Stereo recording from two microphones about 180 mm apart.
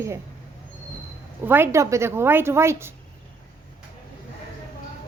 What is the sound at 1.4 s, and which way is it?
A woman's voice, 10° right (ahead or behind).